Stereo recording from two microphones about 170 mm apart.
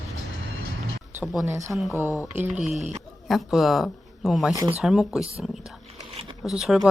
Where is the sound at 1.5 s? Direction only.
15° right (ahead or behind).